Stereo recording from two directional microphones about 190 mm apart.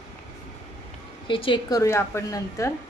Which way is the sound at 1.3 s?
25° left (ahead or behind).